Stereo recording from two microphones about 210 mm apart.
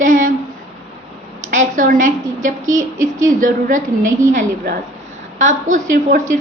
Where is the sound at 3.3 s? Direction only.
40° right (ahead or behind).